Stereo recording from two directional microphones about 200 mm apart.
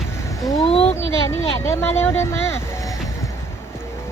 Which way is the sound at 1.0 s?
15° left (ahead or behind).